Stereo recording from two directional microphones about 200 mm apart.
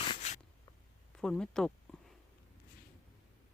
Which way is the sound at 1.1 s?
5° left (ahead or behind).